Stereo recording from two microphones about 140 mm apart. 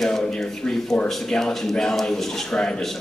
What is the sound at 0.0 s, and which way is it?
Speech, 5° left (ahead or behind).